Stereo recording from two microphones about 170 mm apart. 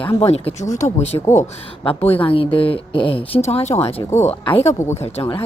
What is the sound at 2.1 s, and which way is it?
Speech, 35° left (ahead or behind).